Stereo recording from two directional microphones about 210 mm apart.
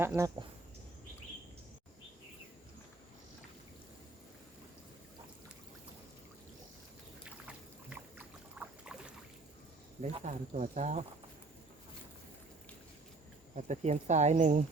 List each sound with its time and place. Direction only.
0.0 s speech: 10° right (ahead or behind)
7.3 s boat: 5° right (ahead or behind)
10.0 s speech: 35° right (ahead or behind)
13.6 s speech: 35° right (ahead or behind)